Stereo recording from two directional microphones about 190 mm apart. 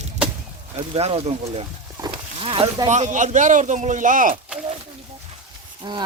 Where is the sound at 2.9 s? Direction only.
40° right (ahead or behind).